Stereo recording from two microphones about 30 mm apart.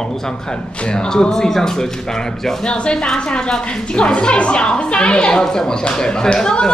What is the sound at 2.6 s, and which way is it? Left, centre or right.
Speech, left.